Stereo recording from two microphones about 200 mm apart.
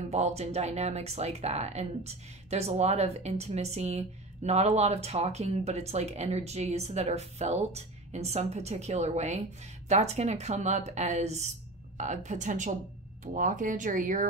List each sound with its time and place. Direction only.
0.1 s speech: 35° right (ahead or behind)